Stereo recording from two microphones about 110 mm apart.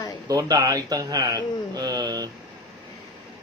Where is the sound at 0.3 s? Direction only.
35° right (ahead or behind).